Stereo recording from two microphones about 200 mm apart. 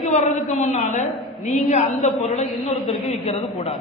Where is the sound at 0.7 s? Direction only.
35° left (ahead or behind).